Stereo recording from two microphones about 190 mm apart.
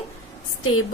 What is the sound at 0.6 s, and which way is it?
Speech, 90° left.